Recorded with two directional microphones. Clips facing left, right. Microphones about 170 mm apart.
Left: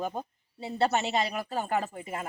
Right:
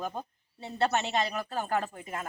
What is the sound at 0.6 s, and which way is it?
Speech, 5° left (ahead or behind).